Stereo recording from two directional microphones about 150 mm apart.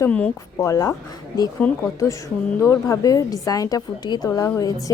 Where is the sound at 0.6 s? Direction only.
20° left (ahead or behind).